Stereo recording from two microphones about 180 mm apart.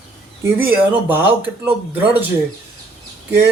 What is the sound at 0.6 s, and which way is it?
Speech, 10° right (ahead or behind).